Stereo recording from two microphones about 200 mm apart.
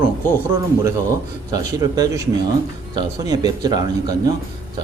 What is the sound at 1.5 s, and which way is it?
A man's voice, 20° right (ahead or behind).